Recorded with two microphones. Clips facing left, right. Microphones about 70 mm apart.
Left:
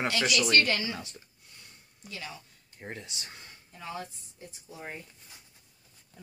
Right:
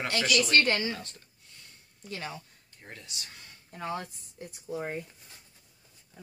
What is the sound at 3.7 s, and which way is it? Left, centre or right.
A woman's voice, right.